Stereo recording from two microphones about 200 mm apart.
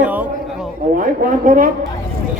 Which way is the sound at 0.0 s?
10° right (ahead or behind).